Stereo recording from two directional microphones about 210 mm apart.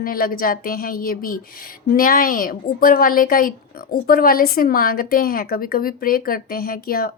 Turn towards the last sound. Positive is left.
turn(degrees=45)  # may be behind; listen again after turning